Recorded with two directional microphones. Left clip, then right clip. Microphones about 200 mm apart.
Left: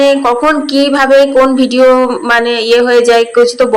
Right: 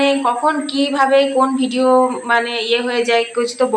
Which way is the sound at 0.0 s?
30° left (ahead or behind).